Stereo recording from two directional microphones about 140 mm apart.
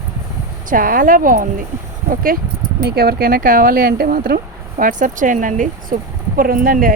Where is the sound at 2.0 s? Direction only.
90° right.